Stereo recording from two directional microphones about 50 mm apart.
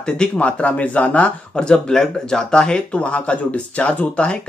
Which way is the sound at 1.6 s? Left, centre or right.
Centre.